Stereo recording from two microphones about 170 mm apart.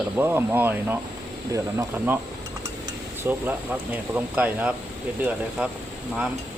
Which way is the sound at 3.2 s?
10° right (ahead or behind).